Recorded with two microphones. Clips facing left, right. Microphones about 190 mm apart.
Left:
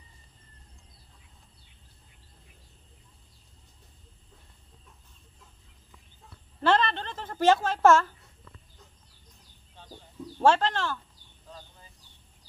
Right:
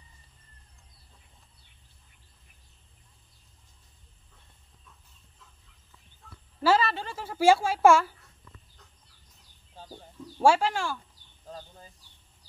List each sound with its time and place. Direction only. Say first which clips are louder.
6.6 s a woman's voice: right 1 dB; 5° right (ahead or behind)
9.8 s bird: right 5 dB; 40° right (ahead or behind)
10.4 s speech: even; 10° right (ahead or behind)
11.4 s a sound: right 5 dB; 40° right (ahead or behind)